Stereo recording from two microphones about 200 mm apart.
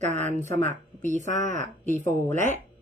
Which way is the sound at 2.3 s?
35° right (ahead or behind).